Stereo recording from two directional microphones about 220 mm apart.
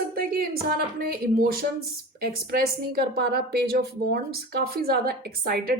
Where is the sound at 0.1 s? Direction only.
40° right (ahead or behind).